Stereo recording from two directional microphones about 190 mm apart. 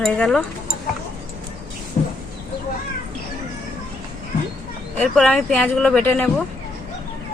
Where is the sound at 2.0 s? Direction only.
40° left (ahead or behind).